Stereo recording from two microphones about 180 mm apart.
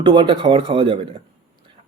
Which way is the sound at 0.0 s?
25° right (ahead or behind).